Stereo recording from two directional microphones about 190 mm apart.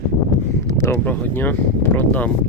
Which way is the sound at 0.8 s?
15° left (ahead or behind).